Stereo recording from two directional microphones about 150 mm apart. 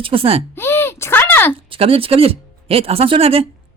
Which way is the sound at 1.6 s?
40° right (ahead or behind).